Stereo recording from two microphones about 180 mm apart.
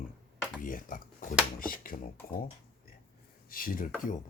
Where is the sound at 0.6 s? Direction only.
50° left (ahead or behind).